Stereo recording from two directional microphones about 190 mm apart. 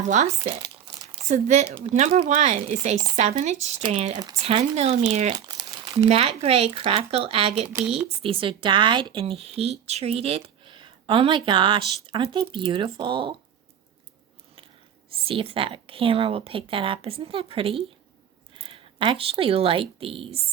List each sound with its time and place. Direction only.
0.1 s speech: 35° right (ahead or behind)
5.5 s crumpling: 20° right (ahead or behind)
6.1 s speech: 30° right (ahead or behind)
7.7 s speech: 5° right (ahead or behind)
8.2 s speech: 30° right (ahead or behind)
15.1 s speech: 30° right (ahead or behind)